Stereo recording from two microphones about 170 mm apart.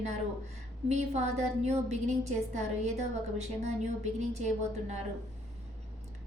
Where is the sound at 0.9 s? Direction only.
40° right (ahead or behind).